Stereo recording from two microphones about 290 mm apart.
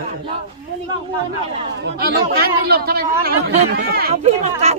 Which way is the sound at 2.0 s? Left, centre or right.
Right.